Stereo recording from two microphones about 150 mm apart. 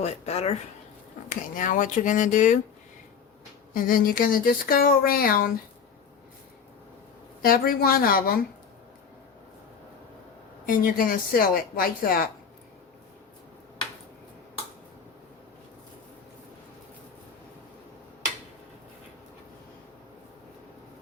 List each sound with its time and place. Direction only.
0.0 s speech: 45° left (ahead or behind)
1.3 s speech: 60° left (ahead or behind)
3.8 s speech: 70° left (ahead or behind)
7.4 s speech: 75° left (ahead or behind)
10.7 s speech: 70° left (ahead or behind)